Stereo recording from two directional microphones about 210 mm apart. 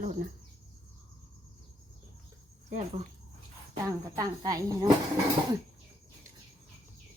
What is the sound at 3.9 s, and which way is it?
Speech, 15° right (ahead or behind).